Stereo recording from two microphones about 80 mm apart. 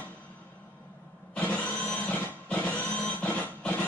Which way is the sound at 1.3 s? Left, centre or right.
Centre.